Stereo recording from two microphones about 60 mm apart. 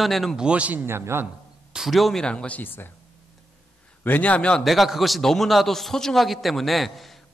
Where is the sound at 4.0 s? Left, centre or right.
Left.